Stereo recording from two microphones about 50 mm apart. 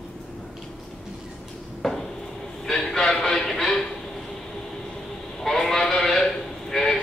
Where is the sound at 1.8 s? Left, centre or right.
Centre.